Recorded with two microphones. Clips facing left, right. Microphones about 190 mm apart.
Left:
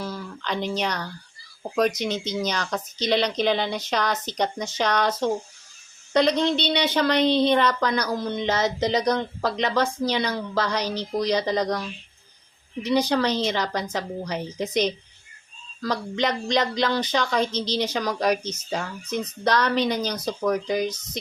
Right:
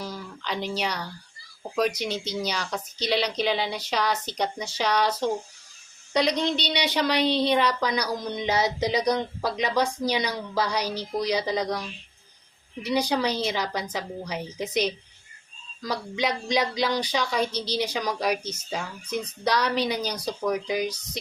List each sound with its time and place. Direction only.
0.0 s a sound: 15° right (ahead or behind)
0.7 s speech: 10° right (ahead or behind)
12.8 s a woman's voice: 10° right (ahead or behind)